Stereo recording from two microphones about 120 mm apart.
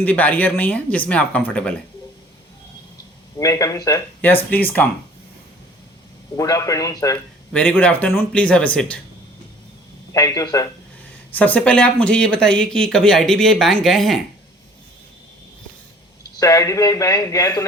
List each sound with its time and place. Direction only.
0.0 s speech: 15° left (ahead or behind)
3.3 s speech: 30° left (ahead or behind)
4.2 s speech: 15° left (ahead or behind)
6.3 s speech: 30° left (ahead or behind)
7.5 s speech: 10° left (ahead or behind)
10.1 s speech: 30° left (ahead or behind)
11.3 s speech: 10° left (ahead or behind)
16.4 s speech: 30° left (ahead or behind)